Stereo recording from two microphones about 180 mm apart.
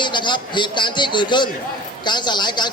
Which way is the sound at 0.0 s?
25° left (ahead or behind).